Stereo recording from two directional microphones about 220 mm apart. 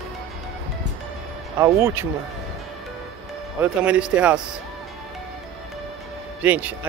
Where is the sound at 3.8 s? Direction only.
5° right (ahead or behind).